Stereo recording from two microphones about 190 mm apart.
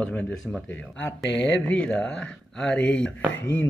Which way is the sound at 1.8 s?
5° left (ahead or behind).